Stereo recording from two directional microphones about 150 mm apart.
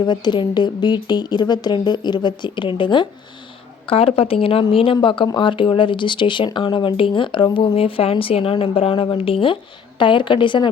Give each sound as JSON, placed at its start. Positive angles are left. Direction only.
{"t": 0.0, "sound": "a woman's voice", "side_deg": 30}